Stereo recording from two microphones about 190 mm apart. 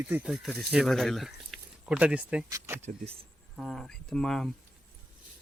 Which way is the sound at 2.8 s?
35° right (ahead or behind).